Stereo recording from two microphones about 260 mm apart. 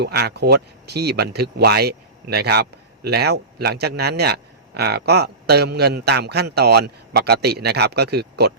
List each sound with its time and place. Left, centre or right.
0.0 s speech: right